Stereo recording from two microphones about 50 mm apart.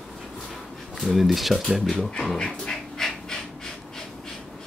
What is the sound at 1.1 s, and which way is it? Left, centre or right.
Speech, centre.